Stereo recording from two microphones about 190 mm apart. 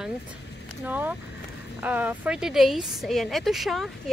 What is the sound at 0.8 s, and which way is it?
A woman's voice, 10° right (ahead or behind).